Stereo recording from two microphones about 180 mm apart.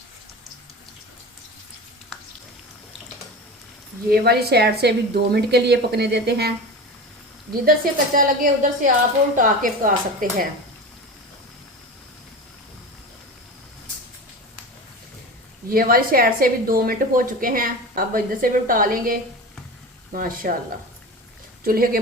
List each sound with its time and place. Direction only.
4.1 s a woman's voice: 60° right (ahead or behind)
7.6 s a woman's voice: 50° right (ahead or behind)
15.7 s a woman's voice: 55° right (ahead or behind)
21.6 s speech: 55° right (ahead or behind)